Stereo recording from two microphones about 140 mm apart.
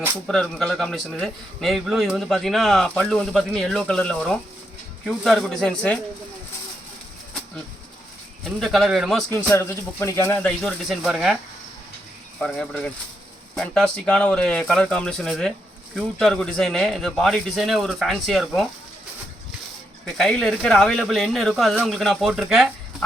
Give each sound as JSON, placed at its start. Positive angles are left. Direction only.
{"t": 0.3, "sound": "a man's voice", "side_deg": 5}
{"t": 8.4, "sound": "a man's voice", "side_deg": 0}
{"t": 9.3, "sound": "speech", "side_deg": 20}
{"t": 10.6, "sound": "a man's voice", "side_deg": 0}
{"t": 12.4, "sound": "a man's voice", "side_deg": 5}
{"t": 20.1, "sound": "a man's voice", "side_deg": 5}